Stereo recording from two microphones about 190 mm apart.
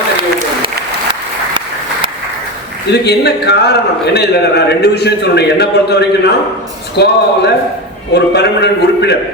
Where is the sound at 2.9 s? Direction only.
60° left (ahead or behind).